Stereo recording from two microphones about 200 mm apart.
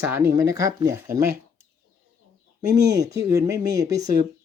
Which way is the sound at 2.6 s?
15° right (ahead or behind).